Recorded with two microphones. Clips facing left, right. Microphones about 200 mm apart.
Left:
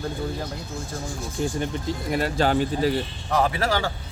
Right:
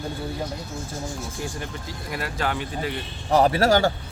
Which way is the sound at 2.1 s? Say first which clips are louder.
Left 6 dB; 30° left (ahead or behind).